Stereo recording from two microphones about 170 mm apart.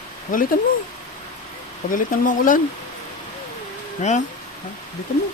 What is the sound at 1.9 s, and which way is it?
Speech, 55° left (ahead or behind).